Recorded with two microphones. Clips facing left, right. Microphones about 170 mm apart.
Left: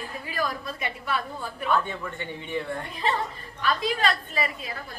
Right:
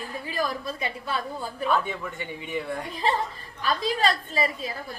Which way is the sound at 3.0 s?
30° right (ahead or behind).